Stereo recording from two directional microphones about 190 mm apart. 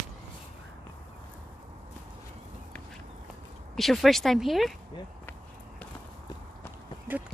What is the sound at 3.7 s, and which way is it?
Speech, centre (ahead or behind).